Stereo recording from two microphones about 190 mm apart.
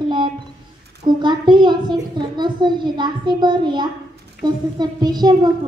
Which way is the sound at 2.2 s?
25° right (ahead or behind).